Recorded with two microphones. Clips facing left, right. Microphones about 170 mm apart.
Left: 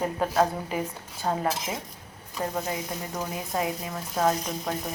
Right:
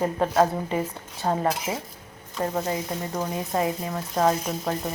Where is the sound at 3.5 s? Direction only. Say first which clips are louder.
Right 3 dB; centre (ahead or behind).